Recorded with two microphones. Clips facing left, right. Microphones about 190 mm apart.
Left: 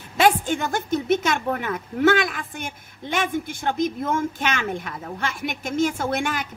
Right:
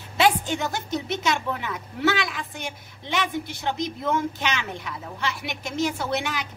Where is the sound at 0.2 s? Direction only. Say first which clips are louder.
Left 2 dB; 50° left (ahead or behind).